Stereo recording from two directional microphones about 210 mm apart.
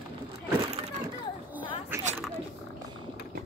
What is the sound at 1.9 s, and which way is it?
Biting, 10° right (ahead or behind).